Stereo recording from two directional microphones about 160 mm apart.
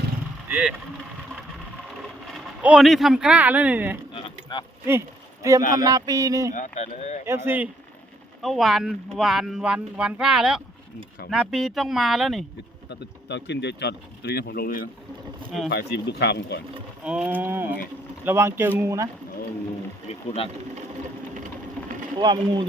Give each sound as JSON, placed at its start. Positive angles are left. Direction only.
{"t": 0.4, "sound": "vehicle", "side_deg": -10}
{"t": 2.6, "sound": "speech", "side_deg": -5}
{"t": 4.1, "sound": "a sound", "side_deg": 30}
{"t": 4.9, "sound": "speech", "side_deg": -15}
{"t": 6.5, "sound": "speech", "side_deg": 50}
{"t": 7.3, "sound": "speech", "side_deg": -15}
{"t": 8.4, "sound": "speech", "side_deg": 0}
{"t": 12.9, "sound": "speech", "side_deg": 90}
{"t": 15.7, "sound": "speech", "side_deg": 90}
{"t": 17.0, "sound": "speech", "side_deg": -5}
{"t": 20.1, "sound": "speech", "side_deg": 35}
{"t": 22.2, "sound": "speech", "side_deg": -30}